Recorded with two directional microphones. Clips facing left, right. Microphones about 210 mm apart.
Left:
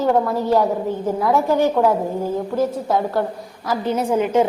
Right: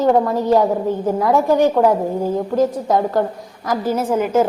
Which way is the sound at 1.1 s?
15° right (ahead or behind).